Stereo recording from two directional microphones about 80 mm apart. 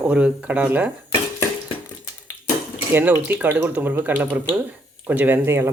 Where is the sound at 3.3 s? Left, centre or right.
Right.